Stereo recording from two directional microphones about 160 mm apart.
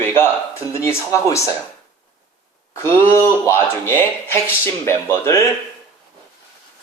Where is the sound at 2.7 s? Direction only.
15° left (ahead or behind).